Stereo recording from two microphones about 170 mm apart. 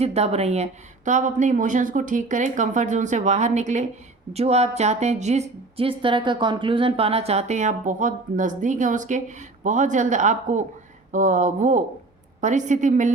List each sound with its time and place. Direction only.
0.0 s a woman's voice: 40° right (ahead or behind)